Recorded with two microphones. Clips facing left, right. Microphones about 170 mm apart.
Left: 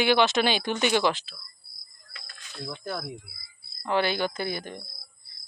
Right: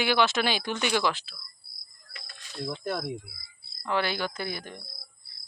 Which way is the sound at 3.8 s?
25° left (ahead or behind).